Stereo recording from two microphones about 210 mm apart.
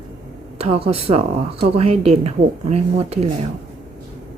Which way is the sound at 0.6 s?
30° right (ahead or behind).